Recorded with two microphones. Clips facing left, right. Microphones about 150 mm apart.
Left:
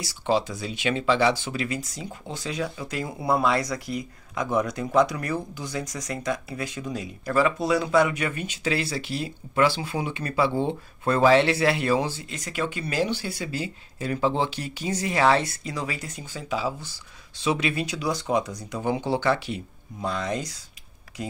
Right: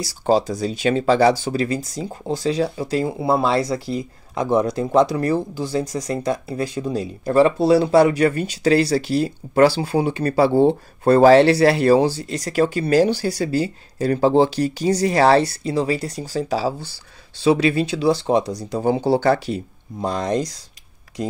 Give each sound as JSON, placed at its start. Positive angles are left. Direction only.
{"t": 0.0, "sound": "speech", "side_deg": -40}